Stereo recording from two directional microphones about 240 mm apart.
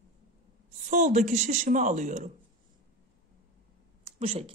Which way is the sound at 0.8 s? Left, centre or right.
Right.